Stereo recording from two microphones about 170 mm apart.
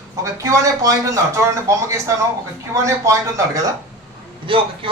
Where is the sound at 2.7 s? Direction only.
20° right (ahead or behind).